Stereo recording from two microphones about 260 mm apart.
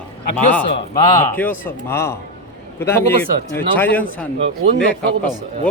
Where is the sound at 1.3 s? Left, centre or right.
Centre.